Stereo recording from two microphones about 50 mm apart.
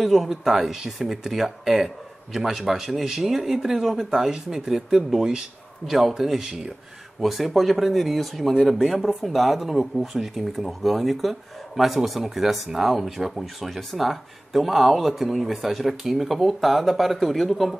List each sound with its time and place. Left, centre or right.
0.0 s speech: centre